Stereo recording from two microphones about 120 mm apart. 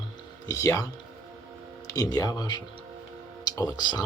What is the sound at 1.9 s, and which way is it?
Speech, 30° left (ahead or behind).